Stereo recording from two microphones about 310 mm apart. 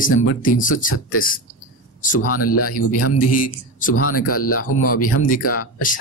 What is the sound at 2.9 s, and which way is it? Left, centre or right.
Speech, left.